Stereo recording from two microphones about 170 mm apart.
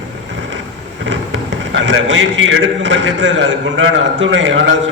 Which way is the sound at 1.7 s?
90° right.